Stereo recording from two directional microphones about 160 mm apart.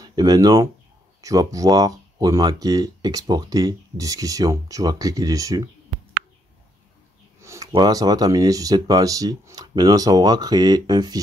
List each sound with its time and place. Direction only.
0.0 s speech: 25° right (ahead or behind)
7.4 s speech: 20° right (ahead or behind)